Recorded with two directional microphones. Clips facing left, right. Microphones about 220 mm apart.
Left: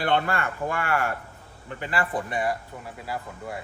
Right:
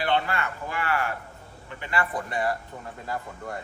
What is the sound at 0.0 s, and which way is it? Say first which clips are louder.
Speech: left 2 dB; 50° left (ahead or behind).